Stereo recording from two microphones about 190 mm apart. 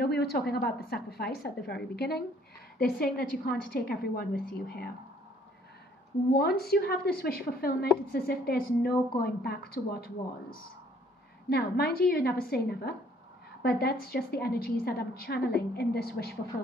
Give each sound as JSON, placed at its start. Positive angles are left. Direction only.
{"t": 0.0, "sound": "a woman's voice", "side_deg": 55}
{"t": 6.3, "sound": "a woman's voice", "side_deg": 55}
{"t": 11.4, "sound": "a woman's voice", "side_deg": 55}